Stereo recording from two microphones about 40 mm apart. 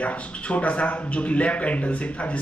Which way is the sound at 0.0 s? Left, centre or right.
Left.